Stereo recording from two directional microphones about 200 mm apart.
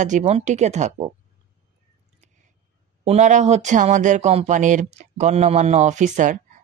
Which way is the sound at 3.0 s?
35° right (ahead or behind).